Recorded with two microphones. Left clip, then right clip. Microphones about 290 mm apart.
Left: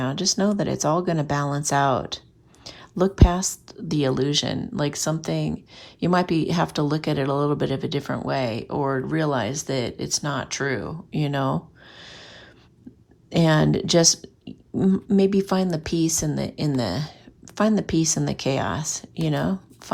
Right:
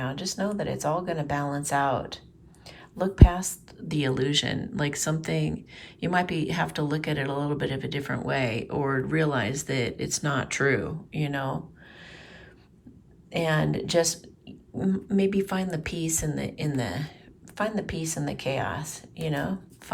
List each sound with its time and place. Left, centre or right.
0.0 s a woman's voice: left
11.9 s a sound: left
13.3 s speech: centre